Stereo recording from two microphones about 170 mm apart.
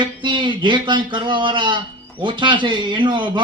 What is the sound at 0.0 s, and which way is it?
A man's voice, 30° right (ahead or behind).